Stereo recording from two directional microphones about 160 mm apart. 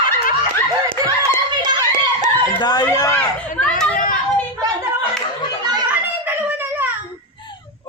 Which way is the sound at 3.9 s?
60° left (ahead or behind).